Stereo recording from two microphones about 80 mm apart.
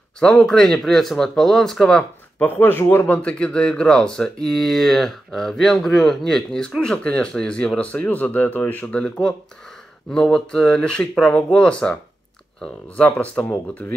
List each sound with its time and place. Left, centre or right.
0.2 s speech: centre
2.4 s speech: left
3.1 s speech: centre